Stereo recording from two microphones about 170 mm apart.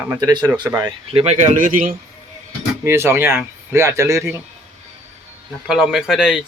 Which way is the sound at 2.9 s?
15° right (ahead or behind).